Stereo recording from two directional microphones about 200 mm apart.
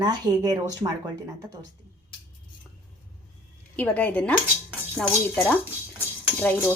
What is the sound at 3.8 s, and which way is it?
Speech, 5° left (ahead or behind).